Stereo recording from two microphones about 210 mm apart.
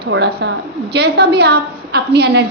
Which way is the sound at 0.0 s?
55° right (ahead or behind).